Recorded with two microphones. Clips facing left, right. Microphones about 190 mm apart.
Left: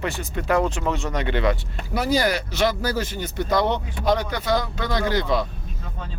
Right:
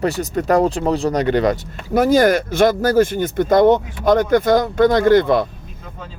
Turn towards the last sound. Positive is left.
turn(degrees=-55)  # may be behind; listen again after turning